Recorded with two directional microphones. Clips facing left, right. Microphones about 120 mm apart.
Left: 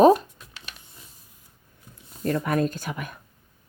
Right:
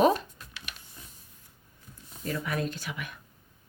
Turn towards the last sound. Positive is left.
turn(degrees=40)  # may be behind; listen again after turning